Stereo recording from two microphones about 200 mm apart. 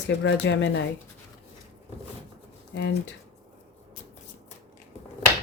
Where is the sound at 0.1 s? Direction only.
65° left (ahead or behind).